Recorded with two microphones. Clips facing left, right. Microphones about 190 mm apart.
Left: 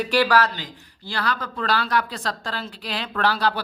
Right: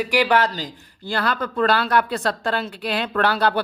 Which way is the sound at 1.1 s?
50° right (ahead or behind).